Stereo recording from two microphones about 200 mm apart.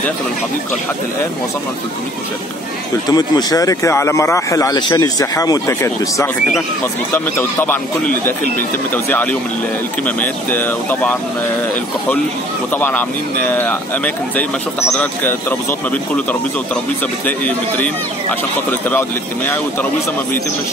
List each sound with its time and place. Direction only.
3.1 s speech: 20° left (ahead or behind)
7.3 s speech: 10° left (ahead or behind)
12.7 s speech: 10° left (ahead or behind)
17.5 s speech: 10° left (ahead or behind)